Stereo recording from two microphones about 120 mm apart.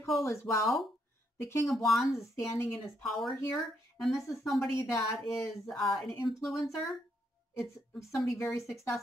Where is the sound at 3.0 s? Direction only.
Centre (ahead or behind).